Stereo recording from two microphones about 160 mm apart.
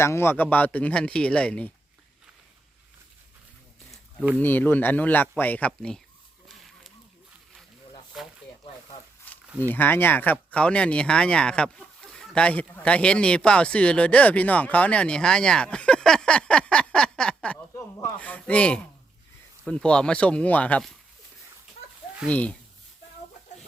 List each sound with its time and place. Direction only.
0.0 s speech: 15° left (ahead or behind)
4.4 s speech: 10° left (ahead or behind)
6.5 s a sound: centre (ahead or behind)
9.3 s a sound: 10° left (ahead or behind)
9.7 s speech: 10° left (ahead or behind)
17.7 s speech: 15° left (ahead or behind)
22.3 s speech: 10° left (ahead or behind)